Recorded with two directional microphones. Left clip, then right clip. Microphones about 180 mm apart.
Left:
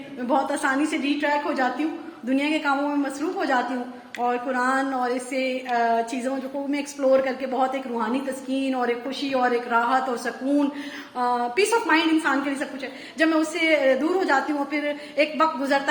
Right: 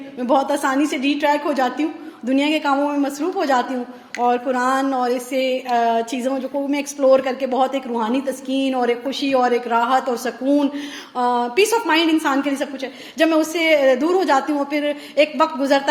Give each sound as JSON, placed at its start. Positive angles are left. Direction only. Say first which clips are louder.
{"t": 0.2, "sound": "speech", "louder": "right 5 dB", "side_deg": -40}